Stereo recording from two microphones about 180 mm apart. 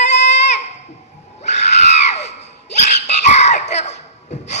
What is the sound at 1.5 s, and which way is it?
Screaming, 40° left (ahead or behind).